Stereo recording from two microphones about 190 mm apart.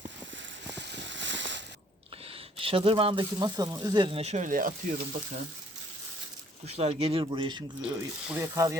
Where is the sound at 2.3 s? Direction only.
30° right (ahead or behind); by 4.9 s 45° right (ahead or behind).